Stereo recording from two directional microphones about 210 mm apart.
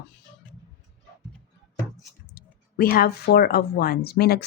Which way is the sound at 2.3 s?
45° left (ahead or behind).